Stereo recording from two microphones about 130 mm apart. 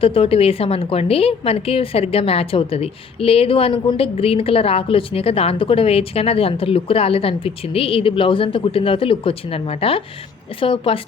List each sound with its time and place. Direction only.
0.0 s a woman's voice: 45° left (ahead or behind)